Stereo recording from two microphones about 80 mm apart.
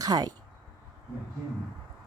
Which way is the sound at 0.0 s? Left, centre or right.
Right.